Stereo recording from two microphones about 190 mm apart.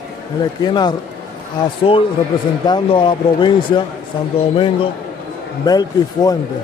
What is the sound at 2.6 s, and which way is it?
Speech, 25° left (ahead or behind).